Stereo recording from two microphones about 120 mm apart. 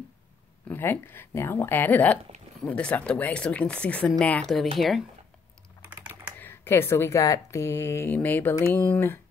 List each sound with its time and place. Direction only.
0.7 s speech: 15° left (ahead or behind); by 5.0 s centre (ahead or behind)
5.9 s typing: 10° right (ahead or behind)
6.3 s speech: 15° left (ahead or behind)